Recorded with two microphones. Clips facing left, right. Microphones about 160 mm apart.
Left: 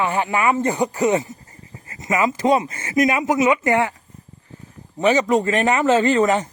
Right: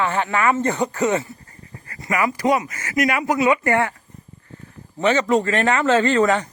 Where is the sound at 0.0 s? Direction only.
15° left (ahead or behind).